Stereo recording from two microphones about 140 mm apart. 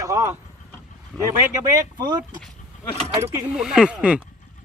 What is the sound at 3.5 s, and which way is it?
Speech, 5° right (ahead or behind).